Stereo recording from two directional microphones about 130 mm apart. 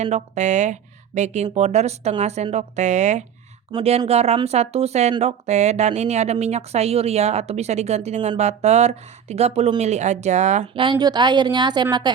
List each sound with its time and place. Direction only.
0.0 s speech: 60° right (ahead or behind)
3.8 s speech: 50° right (ahead or behind)
10.8 s a woman's voice: 35° right (ahead or behind)